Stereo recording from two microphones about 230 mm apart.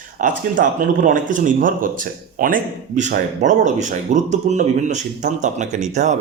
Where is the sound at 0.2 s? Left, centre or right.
Right.